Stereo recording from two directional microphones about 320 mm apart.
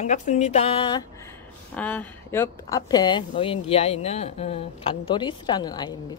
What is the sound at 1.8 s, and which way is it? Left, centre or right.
Speech, centre.